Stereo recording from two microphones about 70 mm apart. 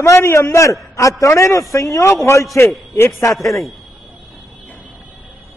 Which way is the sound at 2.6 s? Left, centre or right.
Left.